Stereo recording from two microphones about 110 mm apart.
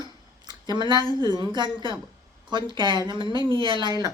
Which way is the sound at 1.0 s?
35° left (ahead or behind).